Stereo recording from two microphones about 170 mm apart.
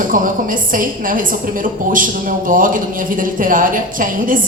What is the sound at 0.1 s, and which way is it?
A woman's voice, 50° right (ahead or behind).